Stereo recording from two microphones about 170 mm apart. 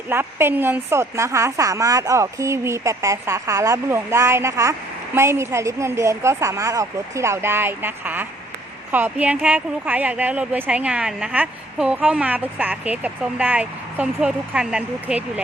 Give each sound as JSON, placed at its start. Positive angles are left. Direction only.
{"t": 0.1, "sound": "a woman's voice", "side_deg": -15}